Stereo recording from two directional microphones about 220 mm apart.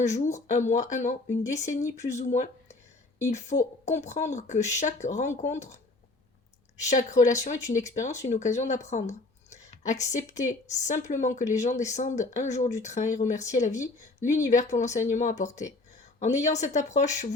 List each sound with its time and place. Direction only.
0.0 s speech: 35° left (ahead or behind)
6.8 s speech: 35° left (ahead or behind)